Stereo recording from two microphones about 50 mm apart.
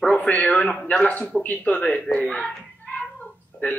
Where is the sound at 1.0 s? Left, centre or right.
Left.